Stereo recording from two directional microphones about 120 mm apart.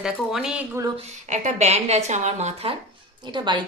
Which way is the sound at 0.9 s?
75° right (ahead or behind).